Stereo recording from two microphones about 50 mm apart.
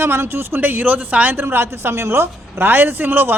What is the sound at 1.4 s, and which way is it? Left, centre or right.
Speech, right.